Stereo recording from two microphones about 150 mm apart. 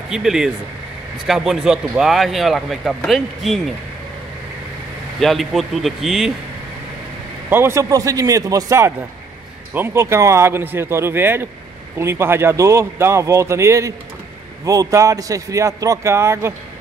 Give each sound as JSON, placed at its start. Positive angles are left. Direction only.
{"t": 0.1, "sound": "speech", "side_deg": -5}
{"t": 5.2, "sound": "speech", "side_deg": 0}
{"t": 7.4, "sound": "a man's voice", "side_deg": -15}